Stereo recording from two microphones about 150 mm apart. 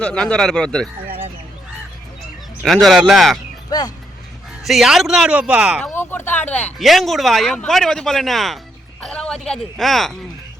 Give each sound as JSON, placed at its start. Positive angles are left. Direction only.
{"t": 0.0, "sound": "speech", "side_deg": 5}
{"t": 2.6, "sound": "speech", "side_deg": 0}
{"t": 3.7, "sound": "speech", "side_deg": 25}
{"t": 4.6, "sound": "speech", "side_deg": 0}
{"t": 5.8, "sound": "speech", "side_deg": 15}
{"t": 6.7, "sound": "speech", "side_deg": 0}